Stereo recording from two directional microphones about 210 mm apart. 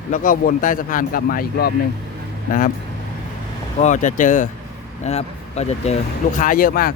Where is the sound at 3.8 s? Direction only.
35° left (ahead or behind).